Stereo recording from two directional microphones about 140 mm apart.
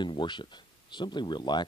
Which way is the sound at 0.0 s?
35° left (ahead or behind).